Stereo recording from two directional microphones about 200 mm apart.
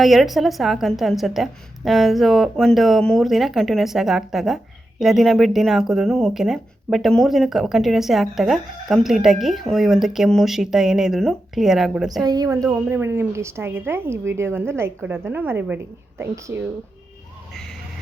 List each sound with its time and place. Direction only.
0.0 s a woman's voice: centre (ahead or behind)
12.2 s a woman's voice: 20° right (ahead or behind)
12.6 s a woman's voice: 10° right (ahead or behind)